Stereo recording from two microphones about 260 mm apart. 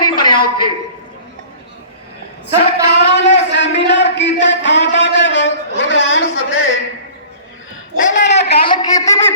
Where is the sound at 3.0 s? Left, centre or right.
Left.